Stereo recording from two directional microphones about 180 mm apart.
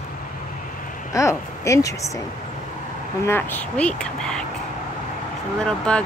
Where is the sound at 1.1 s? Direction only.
15° left (ahead or behind).